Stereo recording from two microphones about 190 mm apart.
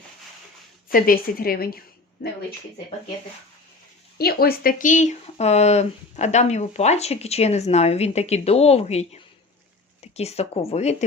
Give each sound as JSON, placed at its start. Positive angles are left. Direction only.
{"t": 0.9, "sound": "a woman's voice", "side_deg": 50}
{"t": 4.2, "sound": "speech", "side_deg": 55}